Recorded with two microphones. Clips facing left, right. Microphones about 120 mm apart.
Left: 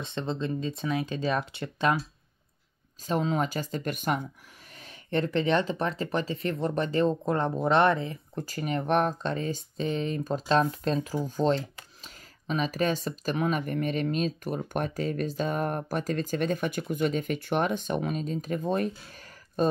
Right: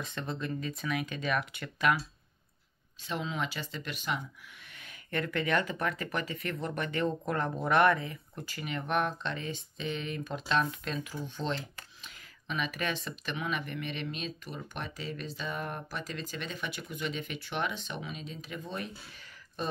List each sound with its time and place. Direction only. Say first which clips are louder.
0.0 s speech: left 5 dB; 25° left (ahead or behind)
3.1 s speech: left 8 dB; 40° left (ahead or behind)
4.7 s speech: left 6 dB; 30° left (ahead or behind)